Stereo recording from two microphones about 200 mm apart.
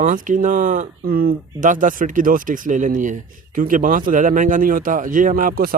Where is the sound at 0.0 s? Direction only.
40° right (ahead or behind).